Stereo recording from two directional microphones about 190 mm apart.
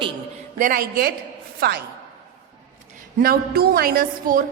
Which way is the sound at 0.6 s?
45° right (ahead or behind).